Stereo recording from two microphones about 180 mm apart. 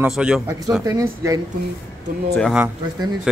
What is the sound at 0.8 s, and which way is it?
Speech, 20° right (ahead or behind).